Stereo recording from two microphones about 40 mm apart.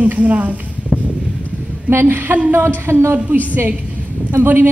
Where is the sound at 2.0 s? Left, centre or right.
Right.